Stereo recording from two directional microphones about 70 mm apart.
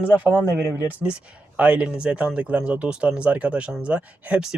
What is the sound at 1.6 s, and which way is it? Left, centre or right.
Speech, centre.